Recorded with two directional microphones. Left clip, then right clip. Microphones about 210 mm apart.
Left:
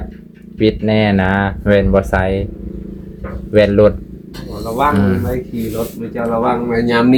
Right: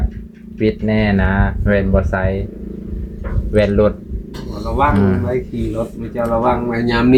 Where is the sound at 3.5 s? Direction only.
20° left (ahead or behind).